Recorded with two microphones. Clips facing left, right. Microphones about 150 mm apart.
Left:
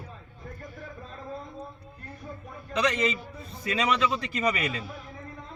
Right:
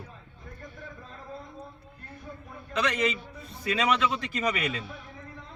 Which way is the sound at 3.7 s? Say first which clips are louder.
Even; centre (ahead or behind).